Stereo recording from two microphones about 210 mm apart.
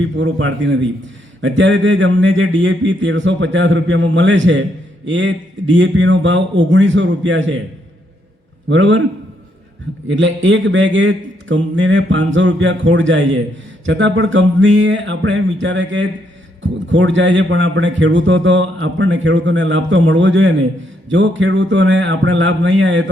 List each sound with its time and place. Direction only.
0.0 s a man's voice: 60° right (ahead or behind)
8.7 s a man's voice: 60° right (ahead or behind)
10.1 s a man's voice: 60° right (ahead or behind)